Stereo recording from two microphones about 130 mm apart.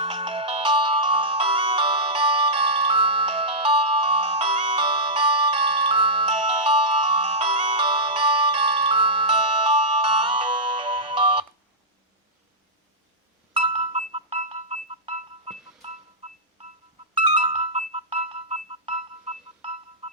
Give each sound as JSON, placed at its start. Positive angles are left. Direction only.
{"t": 0.0, "sound": "music", "side_deg": -45}
{"t": 13.5, "sound": "music", "side_deg": -50}
{"t": 17.2, "sound": "music", "side_deg": -40}